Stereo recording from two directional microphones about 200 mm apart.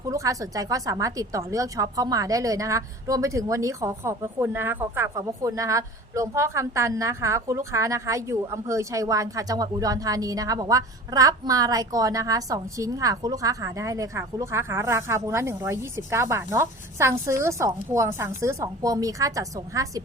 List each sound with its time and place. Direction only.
0.1 s a woman's voice: 15° right (ahead or behind)